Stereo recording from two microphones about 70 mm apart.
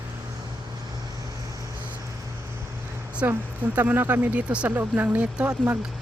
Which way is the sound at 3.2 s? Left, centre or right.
Right.